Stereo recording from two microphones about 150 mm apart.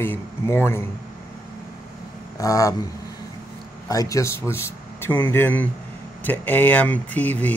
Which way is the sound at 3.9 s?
20° left (ahead or behind).